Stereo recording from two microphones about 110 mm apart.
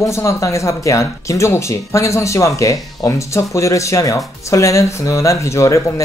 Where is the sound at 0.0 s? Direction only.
25° left (ahead or behind).